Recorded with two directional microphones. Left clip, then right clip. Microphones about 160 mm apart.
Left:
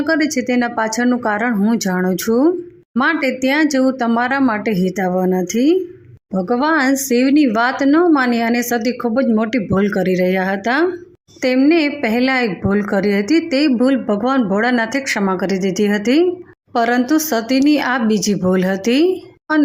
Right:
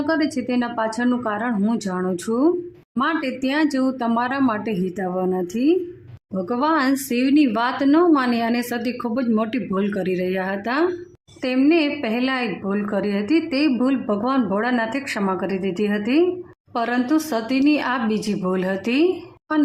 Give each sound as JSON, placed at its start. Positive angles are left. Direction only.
{"t": 0.0, "sound": "a woman's voice", "side_deg": 20}